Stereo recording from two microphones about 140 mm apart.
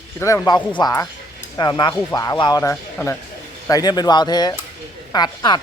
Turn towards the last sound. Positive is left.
turn(degrees=30)  # may be behind; listen again after turning